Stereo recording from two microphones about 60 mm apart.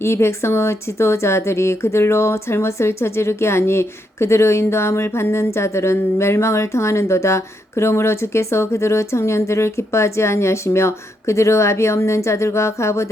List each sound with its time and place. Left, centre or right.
0.0 s a woman's voice: left